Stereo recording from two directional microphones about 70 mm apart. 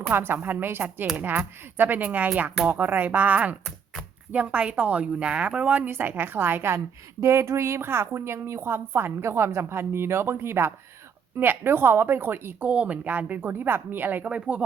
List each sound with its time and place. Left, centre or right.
0.1 s speech: right
12.6 s speech: centre
14.3 s speech: centre